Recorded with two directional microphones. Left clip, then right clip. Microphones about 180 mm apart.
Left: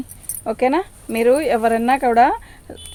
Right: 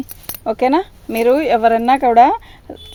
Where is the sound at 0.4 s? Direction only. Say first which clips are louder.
Right 3 dB; 45° right (ahead or behind).